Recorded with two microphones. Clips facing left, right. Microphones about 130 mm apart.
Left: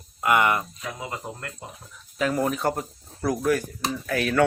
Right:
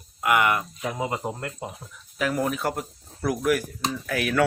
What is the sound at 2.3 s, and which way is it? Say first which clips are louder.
Speech: left 1 dB; centre (ahead or behind).